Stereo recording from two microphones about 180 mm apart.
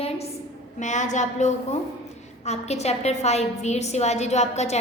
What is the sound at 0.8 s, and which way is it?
A woman's voice, 45° left (ahead or behind).